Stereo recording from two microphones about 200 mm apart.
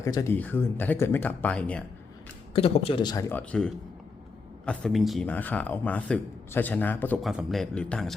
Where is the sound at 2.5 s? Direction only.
30° left (ahead or behind); by 7.3 s 10° left (ahead or behind).